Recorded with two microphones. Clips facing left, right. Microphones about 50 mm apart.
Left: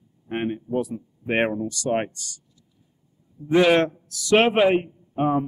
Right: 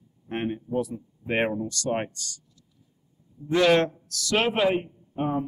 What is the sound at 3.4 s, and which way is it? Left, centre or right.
A man's voice, centre.